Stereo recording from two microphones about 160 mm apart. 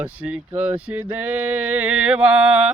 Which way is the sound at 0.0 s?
10° right (ahead or behind).